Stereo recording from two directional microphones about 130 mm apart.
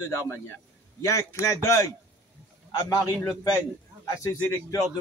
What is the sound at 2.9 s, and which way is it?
Speech, 25° left (ahead or behind).